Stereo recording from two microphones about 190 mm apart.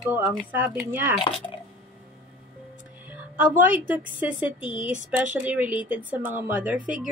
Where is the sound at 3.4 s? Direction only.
10° right (ahead or behind).